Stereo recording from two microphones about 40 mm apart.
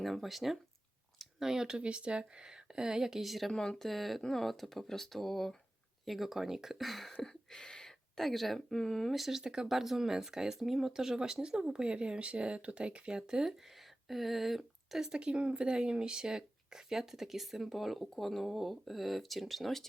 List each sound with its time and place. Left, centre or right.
0.0 s speech: centre
3.5 s speech: centre
3.8 s speech: centre
6.1 s speech: centre
9.1 s speech: centre
9.4 s speech: centre
9.6 s speech: centre
13.4 s speech: centre
15.2 s speech: right; by 19.9 s centre